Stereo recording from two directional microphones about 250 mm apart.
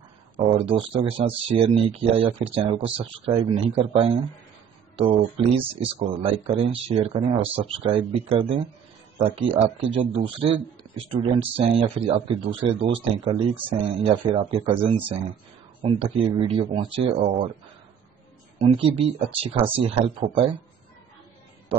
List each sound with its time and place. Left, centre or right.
0.6 s speech: right
5.9 s speech: right
18.6 s speech: right